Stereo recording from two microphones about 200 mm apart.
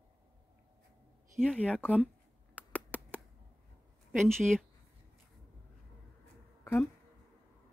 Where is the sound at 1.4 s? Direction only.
5° left (ahead or behind).